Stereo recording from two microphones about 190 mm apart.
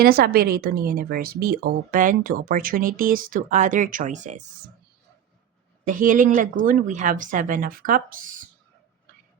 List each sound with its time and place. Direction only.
0.0 s speech: 50° right (ahead or behind)
5.8 s speech: 45° right (ahead or behind)